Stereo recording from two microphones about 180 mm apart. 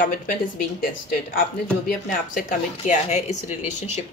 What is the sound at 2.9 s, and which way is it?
Speech, 40° left (ahead or behind).